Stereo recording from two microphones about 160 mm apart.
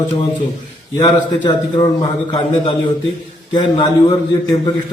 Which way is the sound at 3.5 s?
25° left (ahead or behind).